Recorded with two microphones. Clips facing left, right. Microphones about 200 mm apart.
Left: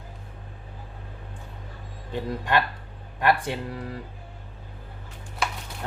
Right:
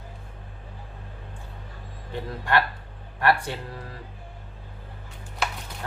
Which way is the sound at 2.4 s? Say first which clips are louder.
Right 2 dB; 20° left (ahead or behind).